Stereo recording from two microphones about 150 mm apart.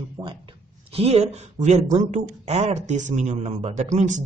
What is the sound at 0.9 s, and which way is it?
Speech, 45° right (ahead or behind).